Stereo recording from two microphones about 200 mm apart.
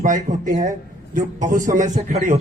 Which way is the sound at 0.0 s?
40° right (ahead or behind).